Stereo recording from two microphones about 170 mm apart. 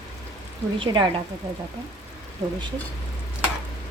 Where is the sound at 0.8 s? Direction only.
25° right (ahead or behind).